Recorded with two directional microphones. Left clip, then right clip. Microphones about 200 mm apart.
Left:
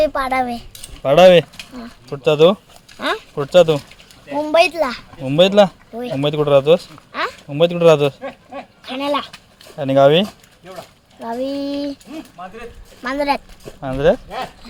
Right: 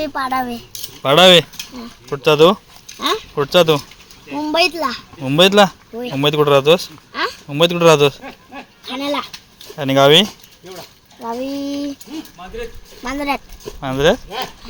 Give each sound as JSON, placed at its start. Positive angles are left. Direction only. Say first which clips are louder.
{"t": 0.0, "sound": "speech", "louder": "left 3 dB", "side_deg": 25}
{"t": 1.0, "sound": "speech", "louder": "even", "side_deg": 0}
{"t": 4.4, "sound": "speech", "louder": "left 2 dB", "side_deg": 15}
{"t": 5.2, "sound": "speech", "louder": "right 1 dB", "side_deg": 0}
{"t": 8.9, "sound": "speech", "louder": "left 1 dB", "side_deg": 20}
{"t": 9.7, "sound": "speech", "louder": "right 1 dB", "side_deg": 0}
{"t": 11.2, "sound": "speech", "louder": "left 1 dB", "side_deg": 25}
{"t": 13.0, "sound": "speech", "louder": "left 3 dB", "side_deg": 20}
{"t": 13.8, "sound": "speech", "louder": "right 1 dB", "side_deg": 0}